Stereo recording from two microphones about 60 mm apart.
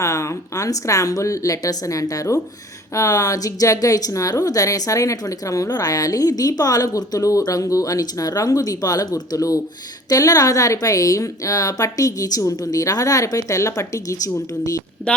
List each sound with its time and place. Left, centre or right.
0.0 s a woman's voice: left